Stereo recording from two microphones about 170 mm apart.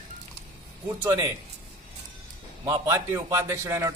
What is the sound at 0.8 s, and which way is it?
Speech, 15° right (ahead or behind).